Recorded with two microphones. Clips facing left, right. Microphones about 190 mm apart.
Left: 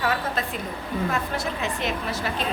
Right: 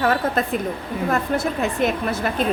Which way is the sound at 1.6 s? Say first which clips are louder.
Right 7 dB; 50° right (ahead or behind).